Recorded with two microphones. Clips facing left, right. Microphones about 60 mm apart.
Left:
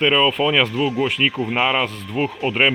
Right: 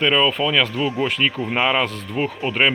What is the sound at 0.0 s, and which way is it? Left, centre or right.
Speech, centre.